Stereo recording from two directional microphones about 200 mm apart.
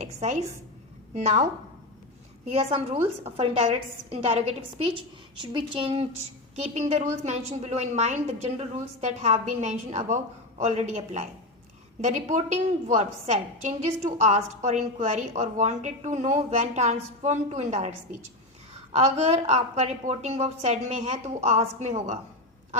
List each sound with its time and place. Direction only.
0.0 s a woman's voice: 35° right (ahead or behind)
2.5 s a woman's voice: 30° right (ahead or behind)